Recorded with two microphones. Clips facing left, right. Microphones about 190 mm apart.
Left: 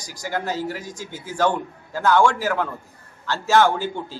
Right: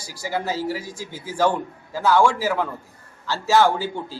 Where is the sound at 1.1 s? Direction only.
35° right (ahead or behind).